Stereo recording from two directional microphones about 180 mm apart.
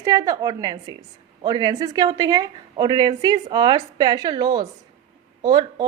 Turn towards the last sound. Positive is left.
turn(degrees=-25)  # may be behind; listen again after turning